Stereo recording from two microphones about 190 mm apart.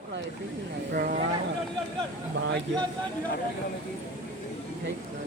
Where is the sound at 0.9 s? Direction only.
50° right (ahead or behind).